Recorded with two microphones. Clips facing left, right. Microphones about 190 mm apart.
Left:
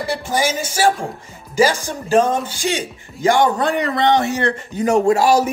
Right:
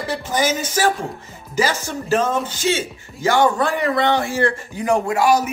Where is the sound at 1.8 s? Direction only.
15° left (ahead or behind).